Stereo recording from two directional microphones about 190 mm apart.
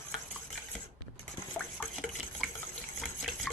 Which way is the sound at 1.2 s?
Centre (ahead or behind).